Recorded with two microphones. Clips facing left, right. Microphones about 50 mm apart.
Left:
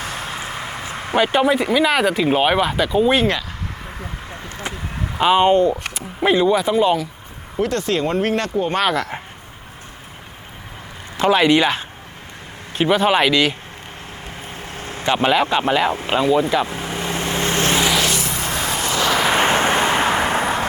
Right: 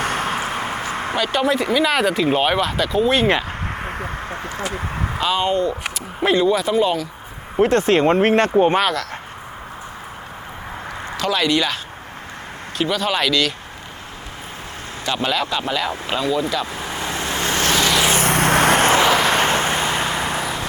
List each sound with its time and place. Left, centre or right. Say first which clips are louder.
0.0 s a sound: right 6 dB; right
1.1 s speech: left 4 dB; left
3.7 s a sound: right 6 dB; right
5.2 s speech: left 6 dB; left
5.9 s speech: left 1 dB; centre
7.6 s speech: right 5 dB; right
9.0 s speech: left 3 dB; centre
11.2 s speech: left 5 dB; left
15.0 s speech: left 5 dB; left
16.6 s vehicle: left 1 dB; left
18.2 s vehicle: right 8 dB; right
19.4 s vehicle: left 2 dB; left